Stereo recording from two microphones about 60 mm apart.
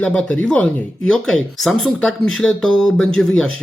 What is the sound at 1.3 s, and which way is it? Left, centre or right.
Speech, centre.